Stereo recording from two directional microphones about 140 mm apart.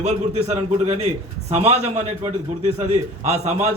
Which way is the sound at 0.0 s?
50° right (ahead or behind).